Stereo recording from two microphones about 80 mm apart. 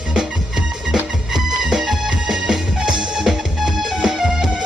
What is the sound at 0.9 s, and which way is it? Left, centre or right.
Music, centre.